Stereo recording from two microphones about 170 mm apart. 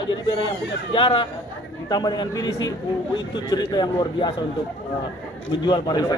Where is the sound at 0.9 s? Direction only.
30° left (ahead or behind).